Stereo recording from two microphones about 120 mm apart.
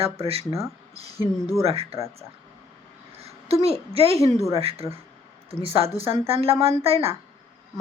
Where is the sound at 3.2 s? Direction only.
60° right (ahead or behind).